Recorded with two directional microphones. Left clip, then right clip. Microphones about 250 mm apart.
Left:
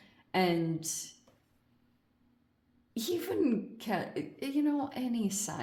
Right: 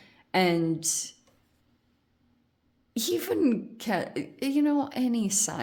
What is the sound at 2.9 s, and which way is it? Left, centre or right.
Speech, right.